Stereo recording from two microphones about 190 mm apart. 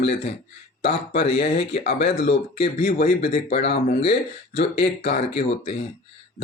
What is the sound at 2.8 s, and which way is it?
Speech, 45° left (ahead or behind).